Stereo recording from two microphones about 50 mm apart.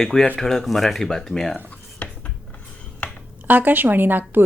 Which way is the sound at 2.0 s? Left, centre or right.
Left.